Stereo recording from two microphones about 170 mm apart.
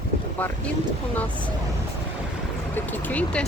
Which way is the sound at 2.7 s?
10° left (ahead or behind).